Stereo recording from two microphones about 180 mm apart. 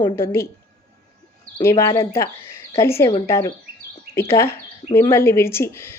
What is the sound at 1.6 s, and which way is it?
A woman's voice, 15° left (ahead or behind).